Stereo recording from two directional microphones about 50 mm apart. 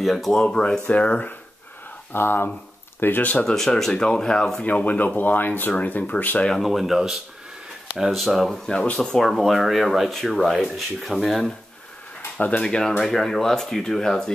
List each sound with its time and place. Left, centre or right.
0.0 s speech: centre; by 1.2 s left
2.1 s speech: left
3.4 s speech: centre
4.6 s speech: left
6.4 s speech: centre
8.9 s speech: centre
9.2 s speech: centre
12.4 s speech: left
12.6 s speech: centre